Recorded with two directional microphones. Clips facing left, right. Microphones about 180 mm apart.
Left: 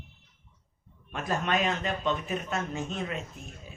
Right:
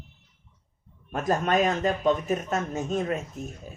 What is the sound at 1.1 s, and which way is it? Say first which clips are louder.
Speech: right 5 dB; 40° right (ahead or behind).